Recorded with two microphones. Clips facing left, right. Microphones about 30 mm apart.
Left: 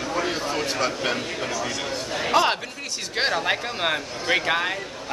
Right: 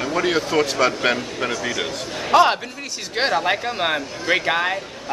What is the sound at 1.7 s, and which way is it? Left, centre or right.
Speech, right.